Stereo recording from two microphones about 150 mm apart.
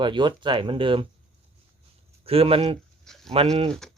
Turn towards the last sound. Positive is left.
turn(degrees=5)  # may be behind; listen again after turning